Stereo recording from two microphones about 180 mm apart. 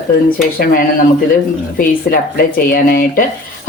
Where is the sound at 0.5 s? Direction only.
55° left (ahead or behind).